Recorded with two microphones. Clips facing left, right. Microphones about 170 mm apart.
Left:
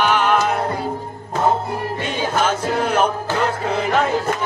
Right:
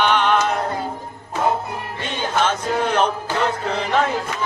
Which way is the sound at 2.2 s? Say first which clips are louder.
Even; 10° left (ahead or behind).